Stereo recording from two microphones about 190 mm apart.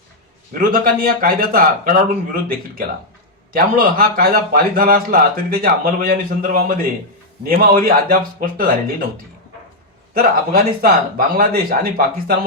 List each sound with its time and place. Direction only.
0.6 s a man's voice: 50° right (ahead or behind)
10.2 s a man's voice: 50° right (ahead or behind)